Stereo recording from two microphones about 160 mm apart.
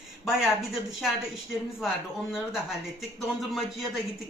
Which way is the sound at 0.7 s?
Centre (ahead or behind).